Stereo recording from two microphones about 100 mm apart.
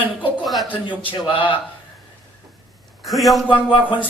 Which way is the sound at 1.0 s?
60° left (ahead or behind).